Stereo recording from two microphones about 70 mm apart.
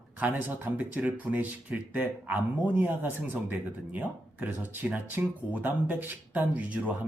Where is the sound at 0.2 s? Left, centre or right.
Right.